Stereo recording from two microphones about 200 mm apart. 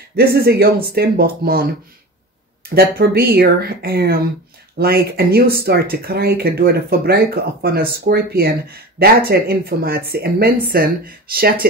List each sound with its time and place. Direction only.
0.1 s speech: 50° right (ahead or behind)
2.7 s speech: 50° right (ahead or behind)